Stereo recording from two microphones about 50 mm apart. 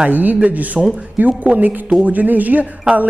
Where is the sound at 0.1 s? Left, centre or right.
Right.